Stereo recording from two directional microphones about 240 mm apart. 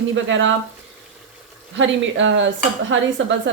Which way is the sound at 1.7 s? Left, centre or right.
Right.